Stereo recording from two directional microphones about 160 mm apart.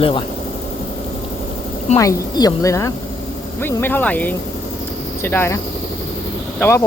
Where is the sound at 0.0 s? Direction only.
30° left (ahead or behind).